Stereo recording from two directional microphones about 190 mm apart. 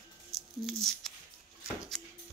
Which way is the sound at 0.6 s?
Centre (ahead or behind).